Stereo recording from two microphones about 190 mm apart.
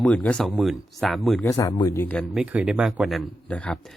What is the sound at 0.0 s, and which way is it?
Speech, 5° left (ahead or behind).